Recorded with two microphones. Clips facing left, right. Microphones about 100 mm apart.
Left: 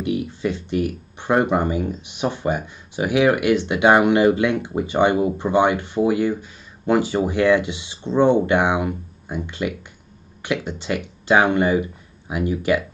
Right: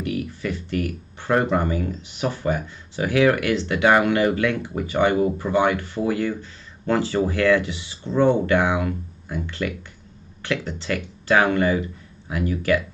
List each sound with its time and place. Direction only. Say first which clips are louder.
0.0 s speech: left 4 dB; 20° left (ahead or behind)